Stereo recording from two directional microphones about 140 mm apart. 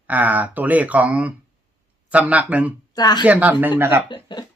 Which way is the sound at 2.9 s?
30° left (ahead or behind).